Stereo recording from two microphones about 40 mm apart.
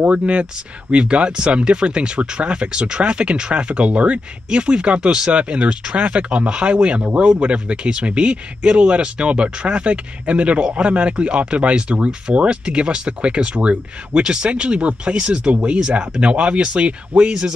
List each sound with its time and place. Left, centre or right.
0.0 s speech: right